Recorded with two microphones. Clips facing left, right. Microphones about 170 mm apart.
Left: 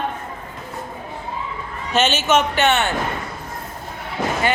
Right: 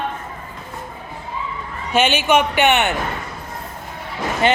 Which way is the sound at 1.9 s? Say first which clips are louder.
Right 1 dB; 10° right (ahead or behind).